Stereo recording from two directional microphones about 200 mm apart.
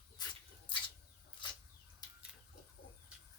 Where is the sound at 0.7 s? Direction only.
25° left (ahead or behind).